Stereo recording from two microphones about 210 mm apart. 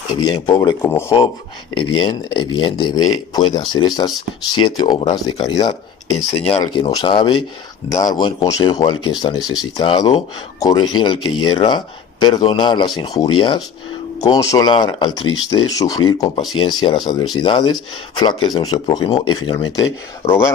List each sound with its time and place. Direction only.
0.2 s speech: 20° left (ahead or behind)
6.3 s speech: 30° left (ahead or behind)